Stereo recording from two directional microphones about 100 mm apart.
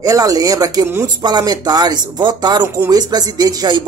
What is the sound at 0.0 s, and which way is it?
Speech, 35° right (ahead or behind).